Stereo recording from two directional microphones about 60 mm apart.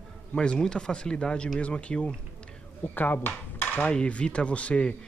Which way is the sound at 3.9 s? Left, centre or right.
Centre.